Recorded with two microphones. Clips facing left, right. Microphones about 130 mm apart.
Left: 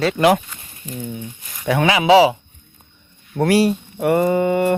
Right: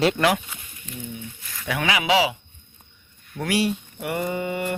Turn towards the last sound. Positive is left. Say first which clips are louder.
# left 10 dB
turn(degrees=45)  # may be behind; listen again after turning